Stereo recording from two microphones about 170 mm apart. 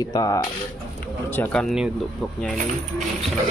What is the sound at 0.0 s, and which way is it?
Speech, 20° left (ahead or behind).